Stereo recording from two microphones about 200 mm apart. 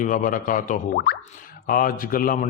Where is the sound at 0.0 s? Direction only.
40° left (ahead or behind).